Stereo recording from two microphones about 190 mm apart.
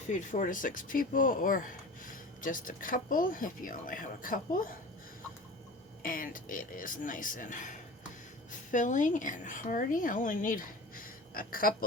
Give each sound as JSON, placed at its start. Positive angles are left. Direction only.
{"t": 0.1, "sound": "speech", "side_deg": 40}
{"t": 6.0, "sound": "a woman's voice", "side_deg": 50}